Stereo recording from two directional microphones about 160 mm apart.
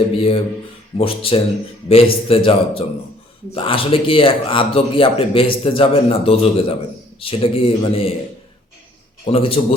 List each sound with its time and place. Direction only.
0.2 s speech: 35° left (ahead or behind)
9.2 s speech: 35° left (ahead or behind)